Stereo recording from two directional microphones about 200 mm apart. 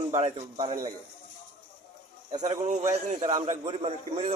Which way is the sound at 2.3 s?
35° right (ahead or behind).